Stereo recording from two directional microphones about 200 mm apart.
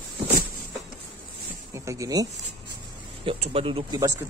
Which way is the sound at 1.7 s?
15° right (ahead or behind).